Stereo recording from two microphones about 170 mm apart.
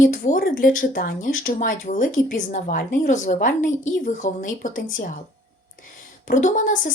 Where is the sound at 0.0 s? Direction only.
50° left (ahead or behind).